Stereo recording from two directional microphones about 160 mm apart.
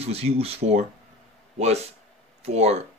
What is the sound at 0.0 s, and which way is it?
Speech, 40° right (ahead or behind).